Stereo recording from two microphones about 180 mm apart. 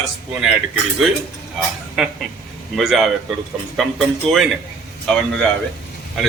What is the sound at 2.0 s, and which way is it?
Speech, 5° right (ahead or behind).